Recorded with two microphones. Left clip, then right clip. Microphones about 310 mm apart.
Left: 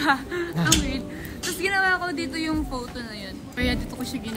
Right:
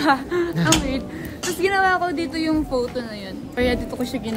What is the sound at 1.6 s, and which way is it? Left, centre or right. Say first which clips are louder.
A woman's voice: right 4 dB; centre.